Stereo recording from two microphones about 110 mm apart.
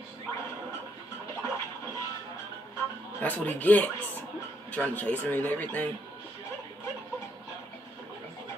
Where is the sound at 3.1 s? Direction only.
15° left (ahead or behind).